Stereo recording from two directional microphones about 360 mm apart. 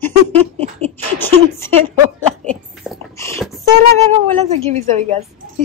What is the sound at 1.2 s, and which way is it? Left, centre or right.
Speech, centre.